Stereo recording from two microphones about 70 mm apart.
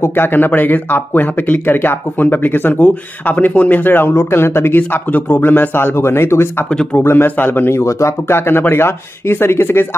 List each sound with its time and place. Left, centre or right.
0.0 s speech: left